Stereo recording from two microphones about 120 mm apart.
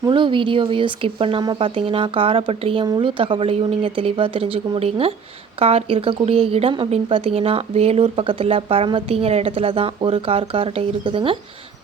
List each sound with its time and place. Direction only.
0.1 s a woman's voice: 45° right (ahead or behind)